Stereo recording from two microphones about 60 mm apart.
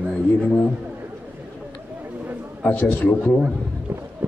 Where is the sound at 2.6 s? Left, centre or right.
Left.